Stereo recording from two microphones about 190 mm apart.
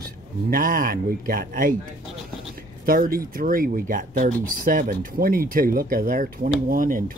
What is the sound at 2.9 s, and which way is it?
Speech, 50° right (ahead or behind).